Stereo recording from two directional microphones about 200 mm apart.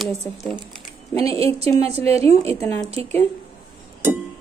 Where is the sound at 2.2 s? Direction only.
15° left (ahead or behind).